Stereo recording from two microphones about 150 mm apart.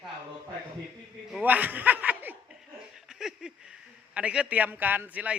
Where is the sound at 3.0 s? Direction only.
5° right (ahead or behind).